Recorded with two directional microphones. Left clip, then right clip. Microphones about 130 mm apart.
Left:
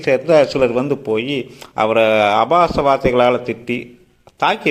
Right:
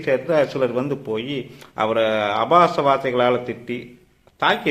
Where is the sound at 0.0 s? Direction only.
55° left (ahead or behind).